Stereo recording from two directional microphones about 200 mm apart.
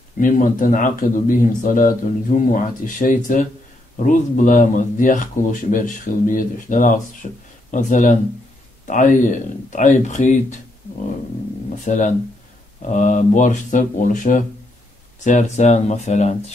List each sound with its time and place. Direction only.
0.2 s speech: 40° left (ahead or behind)
11.8 s speech: 40° left (ahead or behind)